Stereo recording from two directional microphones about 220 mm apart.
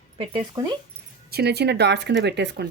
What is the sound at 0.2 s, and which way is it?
Speech, 20° right (ahead or behind).